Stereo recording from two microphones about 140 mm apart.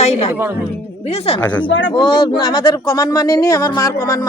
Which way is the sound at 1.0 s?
45° left (ahead or behind).